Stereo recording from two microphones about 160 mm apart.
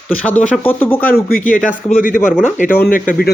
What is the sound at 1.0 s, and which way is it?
Speech, 70° left (ahead or behind).